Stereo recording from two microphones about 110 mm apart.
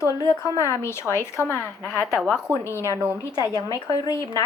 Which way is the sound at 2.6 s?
25° left (ahead or behind).